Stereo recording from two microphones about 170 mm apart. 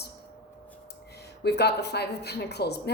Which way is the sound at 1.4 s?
75° left (ahead or behind).